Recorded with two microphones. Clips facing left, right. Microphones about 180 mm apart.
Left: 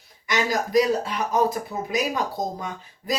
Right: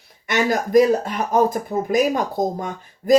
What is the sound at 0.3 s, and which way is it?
Speech, 55° right (ahead or behind).